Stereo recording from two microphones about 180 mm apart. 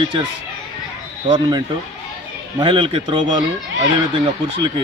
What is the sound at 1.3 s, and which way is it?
Speech, 25° right (ahead or behind).